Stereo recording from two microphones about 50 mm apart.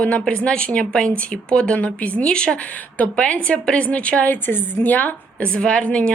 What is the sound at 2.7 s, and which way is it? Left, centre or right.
A woman's voice, left.